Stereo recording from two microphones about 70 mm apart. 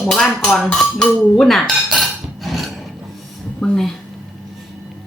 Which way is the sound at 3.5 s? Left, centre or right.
Centre.